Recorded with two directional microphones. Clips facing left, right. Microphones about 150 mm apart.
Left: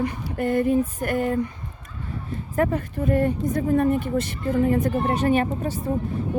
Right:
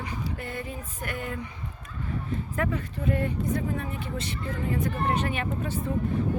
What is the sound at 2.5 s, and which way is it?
Speech, 45° left (ahead or behind).